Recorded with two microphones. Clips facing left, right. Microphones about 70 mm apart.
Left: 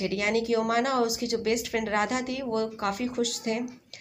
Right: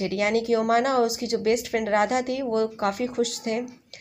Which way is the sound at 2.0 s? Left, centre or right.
Right.